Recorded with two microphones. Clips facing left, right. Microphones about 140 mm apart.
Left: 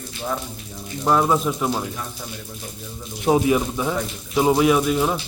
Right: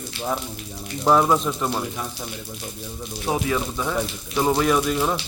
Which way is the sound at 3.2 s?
20° left (ahead or behind).